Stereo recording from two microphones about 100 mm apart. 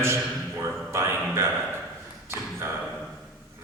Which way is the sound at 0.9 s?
25° right (ahead or behind).